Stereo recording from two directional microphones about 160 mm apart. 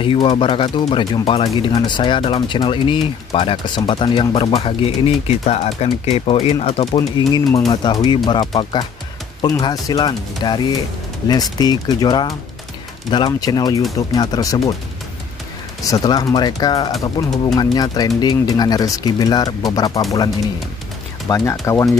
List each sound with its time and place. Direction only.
0.0 s speech: 35° left (ahead or behind)
7.0 s speech: 25° left (ahead or behind)
15.8 s speech: 25° left (ahead or behind)
21.3 s speech: 20° left (ahead or behind)